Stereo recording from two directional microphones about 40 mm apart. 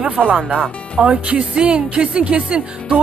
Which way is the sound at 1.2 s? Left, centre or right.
Right.